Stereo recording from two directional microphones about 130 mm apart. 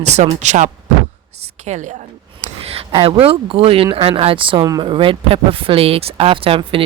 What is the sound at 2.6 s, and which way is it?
Speech, 45° right (ahead or behind).